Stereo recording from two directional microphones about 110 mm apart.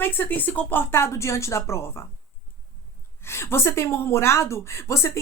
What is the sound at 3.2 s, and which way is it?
A woman's voice, 20° left (ahead or behind).